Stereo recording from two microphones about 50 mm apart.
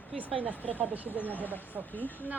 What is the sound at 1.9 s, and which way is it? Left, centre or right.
Speech, left.